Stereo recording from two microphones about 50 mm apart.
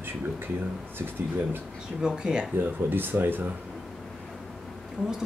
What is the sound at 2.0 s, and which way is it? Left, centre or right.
Speech, centre.